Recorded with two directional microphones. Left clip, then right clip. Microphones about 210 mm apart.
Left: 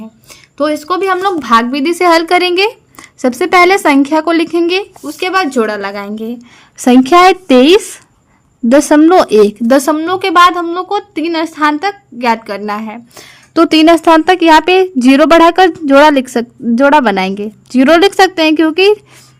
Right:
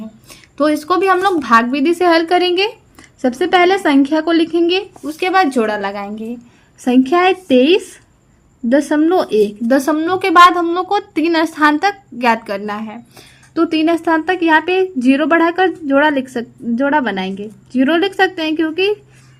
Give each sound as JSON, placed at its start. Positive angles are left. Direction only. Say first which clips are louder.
{"t": 0.0, "sound": "a woman's voice", "louder": "left 2 dB", "side_deg": 15}
{"t": 6.8, "sound": "speech", "louder": "left 7 dB", "side_deg": 45}